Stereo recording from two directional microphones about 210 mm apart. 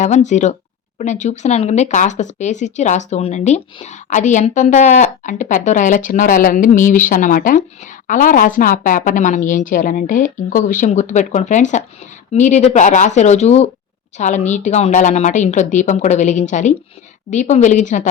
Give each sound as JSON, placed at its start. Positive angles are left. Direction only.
{"t": 0.0, "sound": "speech", "side_deg": 35}